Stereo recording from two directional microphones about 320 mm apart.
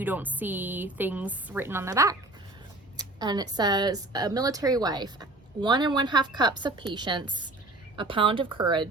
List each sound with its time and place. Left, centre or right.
0.0 s a woman's voice: centre